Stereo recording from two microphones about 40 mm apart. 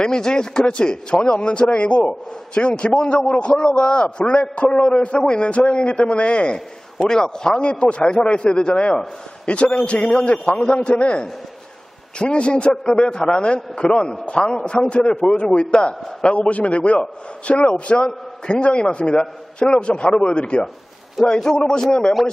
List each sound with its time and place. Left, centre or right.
0.0 s a man's voice: centre
7.1 s a man's voice: centre